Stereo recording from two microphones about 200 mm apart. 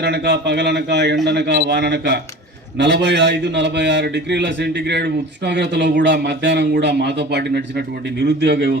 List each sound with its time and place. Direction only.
0.0 s a man's voice: 55° right (ahead or behind)